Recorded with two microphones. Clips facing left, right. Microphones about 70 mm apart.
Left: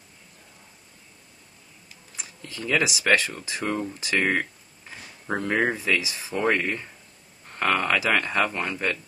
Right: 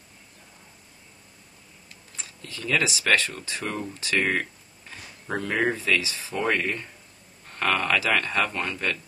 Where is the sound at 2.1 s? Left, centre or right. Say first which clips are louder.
Left 2 dB; centre.